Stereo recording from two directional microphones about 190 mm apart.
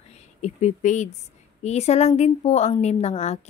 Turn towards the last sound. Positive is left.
turn(degrees=35)  # may be behind; listen again after turning